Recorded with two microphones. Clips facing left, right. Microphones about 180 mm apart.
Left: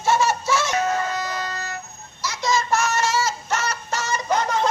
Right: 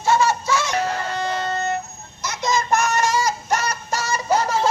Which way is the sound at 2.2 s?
20° right (ahead or behind).